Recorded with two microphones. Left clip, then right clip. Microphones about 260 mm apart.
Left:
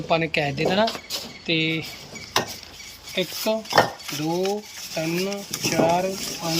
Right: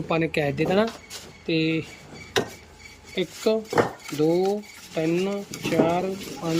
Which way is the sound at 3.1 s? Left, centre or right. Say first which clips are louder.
Even; centre.